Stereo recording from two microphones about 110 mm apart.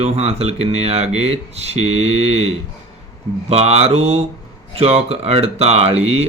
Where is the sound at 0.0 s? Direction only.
70° right (ahead or behind).